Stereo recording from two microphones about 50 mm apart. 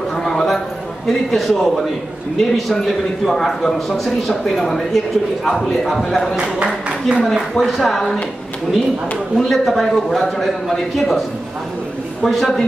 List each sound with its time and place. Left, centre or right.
0.2 s a sound: centre
1.0 s a man's voice: centre
6.3 s speech: centre
7.5 s a man's voice: centre
9.4 s a man's voice: centre
12.2 s a man's voice: centre